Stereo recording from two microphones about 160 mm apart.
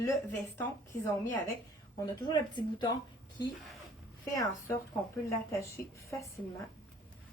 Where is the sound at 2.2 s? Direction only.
25° left (ahead or behind).